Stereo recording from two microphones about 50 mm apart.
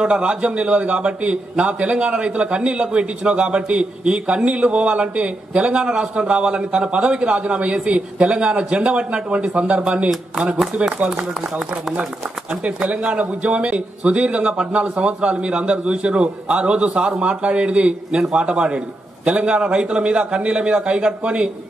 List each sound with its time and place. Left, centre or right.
0.0 s a man's voice: right
12.6 s a man's voice: right